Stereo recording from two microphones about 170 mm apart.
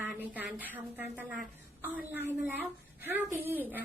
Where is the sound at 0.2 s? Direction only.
10° right (ahead or behind).